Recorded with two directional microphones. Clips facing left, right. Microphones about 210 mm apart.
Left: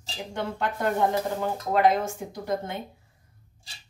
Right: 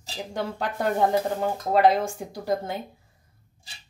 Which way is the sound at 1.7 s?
35° right (ahead or behind).